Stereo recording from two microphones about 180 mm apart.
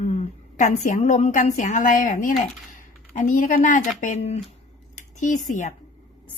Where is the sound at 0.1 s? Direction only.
40° left (ahead or behind).